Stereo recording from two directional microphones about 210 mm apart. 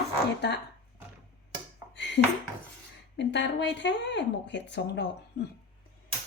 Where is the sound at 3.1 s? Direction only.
55° left (ahead or behind).